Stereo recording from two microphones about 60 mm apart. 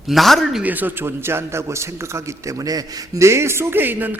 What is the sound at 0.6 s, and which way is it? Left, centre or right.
A man's voice, right.